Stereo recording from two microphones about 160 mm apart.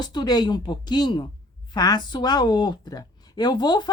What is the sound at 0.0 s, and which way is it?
Speech, 25° left (ahead or behind).